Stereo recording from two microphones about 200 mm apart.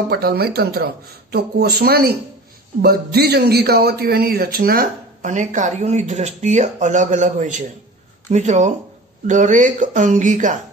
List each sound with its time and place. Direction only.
0.1 s a man's voice: 50° right (ahead or behind)